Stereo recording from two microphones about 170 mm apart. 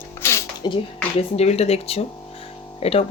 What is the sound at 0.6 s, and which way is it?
Speech, 25° left (ahead or behind).